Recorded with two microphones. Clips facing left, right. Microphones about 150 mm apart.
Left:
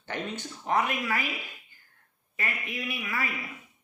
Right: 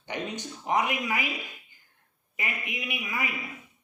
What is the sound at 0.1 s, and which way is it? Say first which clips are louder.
Speech: right 1 dB; 15° right (ahead or behind).